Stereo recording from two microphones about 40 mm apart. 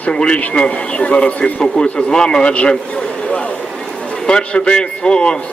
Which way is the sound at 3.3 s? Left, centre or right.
Left.